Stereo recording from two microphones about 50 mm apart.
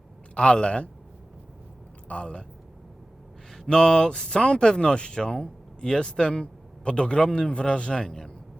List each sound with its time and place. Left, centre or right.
0.3 s a man's voice: left
2.0 s a man's voice: left
3.7 s speech: centre